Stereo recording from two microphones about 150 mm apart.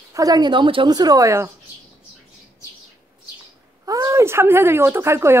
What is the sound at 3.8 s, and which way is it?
Speech, 20° right (ahead or behind).